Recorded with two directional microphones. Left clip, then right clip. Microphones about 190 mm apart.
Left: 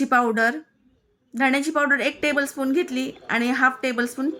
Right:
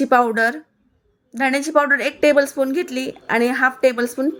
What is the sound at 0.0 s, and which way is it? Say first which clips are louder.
Speech: right 4 dB; 15° right (ahead or behind).